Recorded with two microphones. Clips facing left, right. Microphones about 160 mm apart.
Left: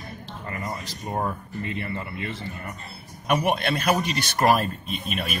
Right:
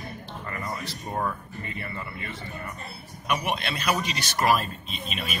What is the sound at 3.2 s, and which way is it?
A man's voice, 50° left (ahead or behind).